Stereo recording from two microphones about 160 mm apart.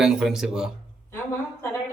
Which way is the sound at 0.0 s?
5° right (ahead or behind).